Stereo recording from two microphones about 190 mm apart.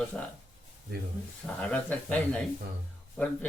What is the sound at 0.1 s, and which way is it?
Speech, 5° left (ahead or behind).